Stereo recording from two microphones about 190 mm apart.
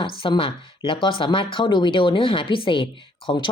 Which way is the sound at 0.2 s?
30° left (ahead or behind).